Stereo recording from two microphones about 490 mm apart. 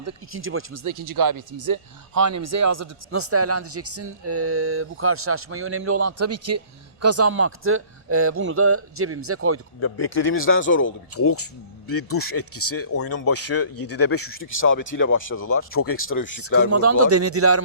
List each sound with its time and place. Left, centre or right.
0.0 s speech: right
0.9 s speech: right
9.8 s speech: left
16.7 s speech: right